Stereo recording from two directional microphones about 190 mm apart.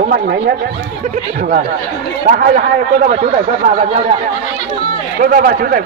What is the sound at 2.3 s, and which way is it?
Speech, 50° right (ahead or behind).